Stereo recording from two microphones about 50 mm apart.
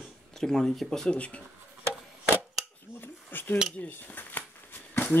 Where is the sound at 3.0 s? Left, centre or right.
Left.